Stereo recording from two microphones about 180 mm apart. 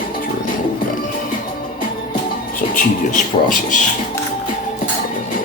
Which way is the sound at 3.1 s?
45° left (ahead or behind).